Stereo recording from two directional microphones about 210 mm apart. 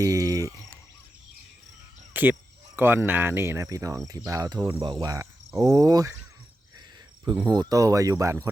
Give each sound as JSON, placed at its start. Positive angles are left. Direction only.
{"t": 0.0, "sound": "a sound", "side_deg": -15}
{"t": 2.1, "sound": "cricket", "side_deg": -10}
{"t": 2.7, "sound": "speech", "side_deg": -10}
{"t": 7.3, "sound": "speech", "side_deg": -20}